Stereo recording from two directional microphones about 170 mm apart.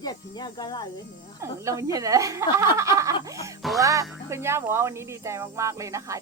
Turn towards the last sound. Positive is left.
turn(degrees=-20)  # may be behind; listen again after turning